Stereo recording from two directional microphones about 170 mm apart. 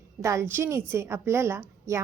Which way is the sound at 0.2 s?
15° right (ahead or behind).